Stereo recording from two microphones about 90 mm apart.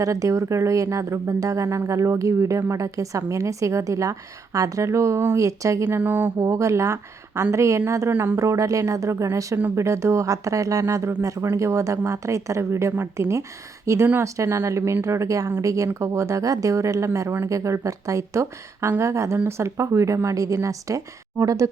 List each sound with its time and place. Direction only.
0.0 s speech: 35° right (ahead or behind)
6.0 s speech: 20° right (ahead or behind)
6.4 s speech: 35° right (ahead or behind)
8.4 s speech: 35° right (ahead or behind)